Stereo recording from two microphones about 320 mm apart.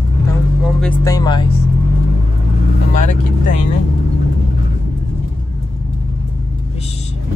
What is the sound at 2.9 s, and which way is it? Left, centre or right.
Speech, left.